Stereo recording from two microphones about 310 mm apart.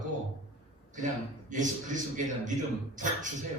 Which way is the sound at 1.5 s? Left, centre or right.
Right.